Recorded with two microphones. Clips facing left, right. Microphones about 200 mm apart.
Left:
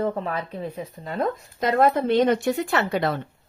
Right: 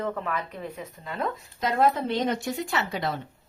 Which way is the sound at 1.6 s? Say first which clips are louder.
Left 4 dB; 55° left (ahead or behind).